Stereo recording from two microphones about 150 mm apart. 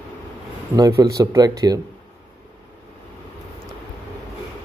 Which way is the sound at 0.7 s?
25° right (ahead or behind).